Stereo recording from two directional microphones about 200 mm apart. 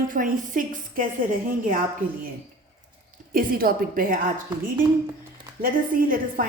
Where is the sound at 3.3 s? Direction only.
45° right (ahead or behind).